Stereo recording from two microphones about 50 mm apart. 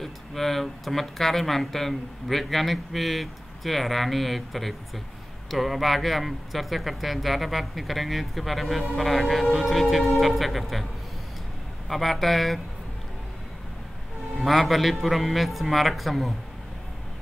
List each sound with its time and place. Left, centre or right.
0.0 s a man's voice: centre
11.9 s a man's voice: centre
14.3 s a man's voice: centre